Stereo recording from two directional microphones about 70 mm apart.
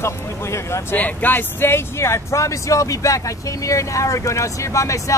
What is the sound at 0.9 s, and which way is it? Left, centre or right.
Speech, left.